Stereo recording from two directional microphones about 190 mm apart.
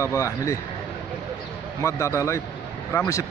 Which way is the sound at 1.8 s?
15° left (ahead or behind).